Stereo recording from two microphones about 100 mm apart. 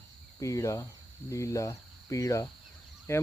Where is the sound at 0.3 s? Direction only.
30° left (ahead or behind).